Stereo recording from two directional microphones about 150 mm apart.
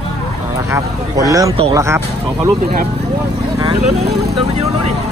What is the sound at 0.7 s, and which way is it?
Speech, 20° right (ahead or behind).